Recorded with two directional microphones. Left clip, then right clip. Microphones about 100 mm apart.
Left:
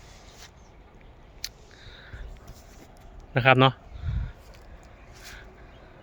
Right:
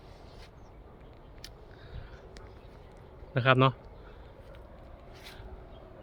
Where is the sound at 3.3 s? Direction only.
50° left (ahead or behind).